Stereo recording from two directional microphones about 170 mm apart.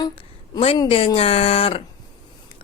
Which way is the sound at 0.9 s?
35° left (ahead or behind).